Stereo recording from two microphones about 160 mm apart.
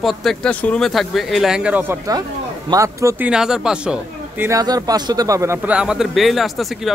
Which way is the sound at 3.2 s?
5° right (ahead or behind).